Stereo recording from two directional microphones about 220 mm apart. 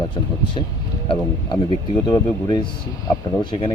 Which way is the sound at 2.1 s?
20° left (ahead or behind).